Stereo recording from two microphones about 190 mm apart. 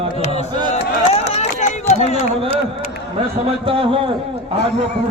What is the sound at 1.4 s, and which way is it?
Run, 35° left (ahead or behind).